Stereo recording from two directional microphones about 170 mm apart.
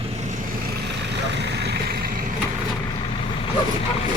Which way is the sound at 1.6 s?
70° right (ahead or behind).